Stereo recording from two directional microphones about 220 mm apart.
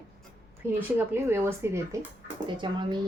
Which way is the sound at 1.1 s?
10° right (ahead or behind).